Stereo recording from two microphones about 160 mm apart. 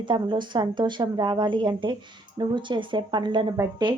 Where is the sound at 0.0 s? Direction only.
30° right (ahead or behind).